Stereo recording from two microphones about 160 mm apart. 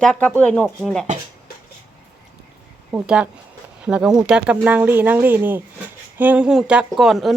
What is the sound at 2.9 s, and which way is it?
Speech, 5° right (ahead or behind).